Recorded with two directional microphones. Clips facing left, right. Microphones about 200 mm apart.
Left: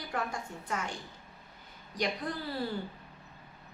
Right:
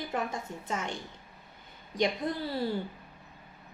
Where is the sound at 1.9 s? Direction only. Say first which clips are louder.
Right 5 dB; 25° right (ahead or behind).